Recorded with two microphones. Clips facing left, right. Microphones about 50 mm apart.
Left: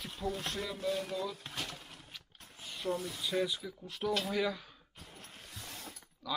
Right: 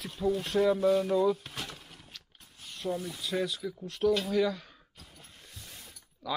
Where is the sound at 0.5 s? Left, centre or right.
Right.